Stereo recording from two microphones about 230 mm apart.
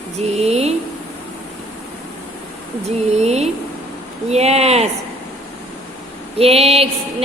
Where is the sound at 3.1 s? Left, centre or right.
Right.